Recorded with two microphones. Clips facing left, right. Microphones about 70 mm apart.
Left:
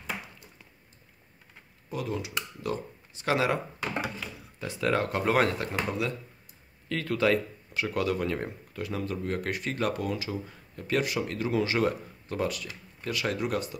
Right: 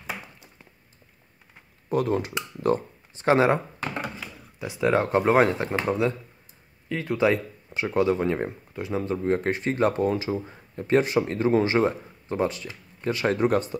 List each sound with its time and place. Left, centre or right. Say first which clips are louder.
1.9 s speech: right 9 dB; right
4.2 s speech: right 2 dB; centre
6.9 s speech: right 3 dB; centre; by 13.7 s right